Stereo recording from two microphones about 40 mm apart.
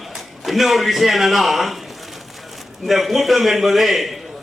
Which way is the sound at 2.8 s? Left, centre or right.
Centre.